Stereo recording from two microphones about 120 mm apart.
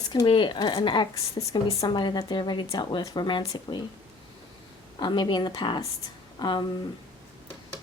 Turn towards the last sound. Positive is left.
turn(degrees=35)  # may be behind; listen again after turning